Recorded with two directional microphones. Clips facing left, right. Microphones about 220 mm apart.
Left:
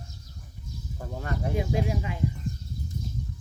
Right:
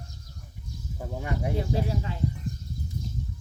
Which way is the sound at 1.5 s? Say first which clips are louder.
Left 3 dB; 15° left (ahead or behind).